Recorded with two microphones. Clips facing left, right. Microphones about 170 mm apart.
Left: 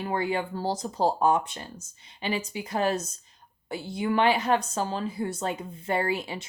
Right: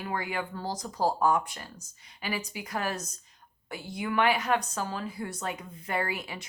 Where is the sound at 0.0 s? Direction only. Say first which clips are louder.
Left 5 dB; 30° left (ahead or behind).